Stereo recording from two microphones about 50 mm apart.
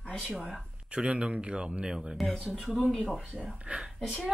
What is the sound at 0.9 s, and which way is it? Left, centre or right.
Speech, right.